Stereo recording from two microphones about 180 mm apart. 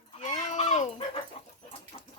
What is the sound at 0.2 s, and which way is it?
Chicken, 45° left (ahead or behind).